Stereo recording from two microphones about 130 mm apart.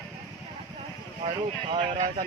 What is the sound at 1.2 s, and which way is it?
Speech, 55° right (ahead or behind).